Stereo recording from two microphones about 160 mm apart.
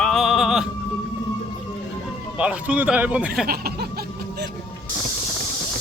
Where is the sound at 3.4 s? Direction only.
70° right (ahead or behind).